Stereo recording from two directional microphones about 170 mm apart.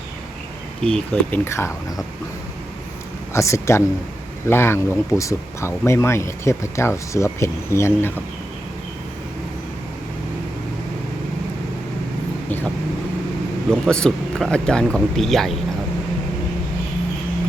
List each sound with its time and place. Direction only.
0.8 s speech: 5° left (ahead or behind)
3.3 s speech: 15° left (ahead or behind)
13.7 s speech: 5° left (ahead or behind)